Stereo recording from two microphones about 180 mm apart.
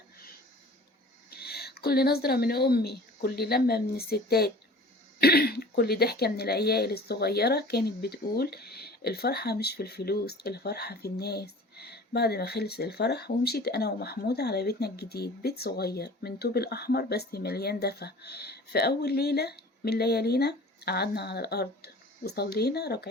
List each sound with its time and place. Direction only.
1.3 s speech: 60° left (ahead or behind)